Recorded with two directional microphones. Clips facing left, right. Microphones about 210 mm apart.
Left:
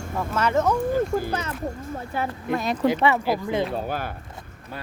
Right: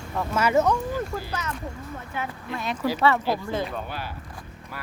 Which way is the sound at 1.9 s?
40° left (ahead or behind).